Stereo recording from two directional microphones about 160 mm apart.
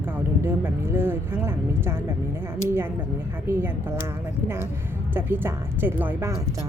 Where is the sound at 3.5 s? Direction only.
15° right (ahead or behind).